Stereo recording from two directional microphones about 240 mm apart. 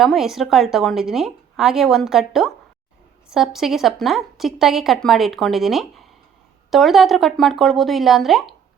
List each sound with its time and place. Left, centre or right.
0.0 s a woman's voice: centre